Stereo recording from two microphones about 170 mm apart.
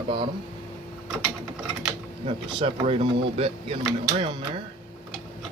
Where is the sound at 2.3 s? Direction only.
35° right (ahead or behind).